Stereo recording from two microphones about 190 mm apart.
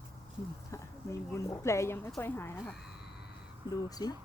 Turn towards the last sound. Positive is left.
turn(degrees=20)  # may be behind; listen again after turning